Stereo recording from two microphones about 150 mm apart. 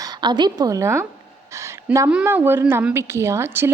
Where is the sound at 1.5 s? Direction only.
20° right (ahead or behind).